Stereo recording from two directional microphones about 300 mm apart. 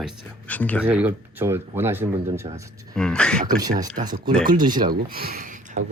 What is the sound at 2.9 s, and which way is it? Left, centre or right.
Speech, centre.